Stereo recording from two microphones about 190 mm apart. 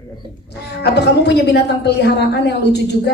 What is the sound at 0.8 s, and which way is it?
A woman's voice, 60° left (ahead or behind).